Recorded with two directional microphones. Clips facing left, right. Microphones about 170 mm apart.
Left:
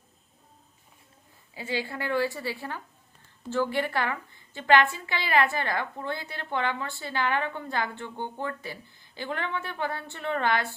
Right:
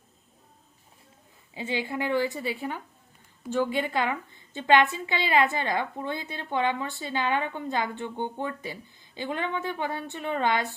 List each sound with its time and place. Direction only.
1.5 s a woman's voice: 20° right (ahead or behind)